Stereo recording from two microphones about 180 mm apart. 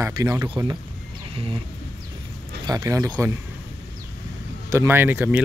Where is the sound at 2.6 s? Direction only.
20° right (ahead or behind).